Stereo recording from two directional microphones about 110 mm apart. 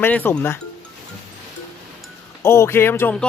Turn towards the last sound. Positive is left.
turn(degrees=20)  # may be behind; listen again after turning